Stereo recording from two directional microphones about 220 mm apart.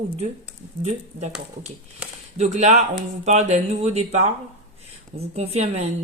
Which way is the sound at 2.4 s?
30° right (ahead or behind).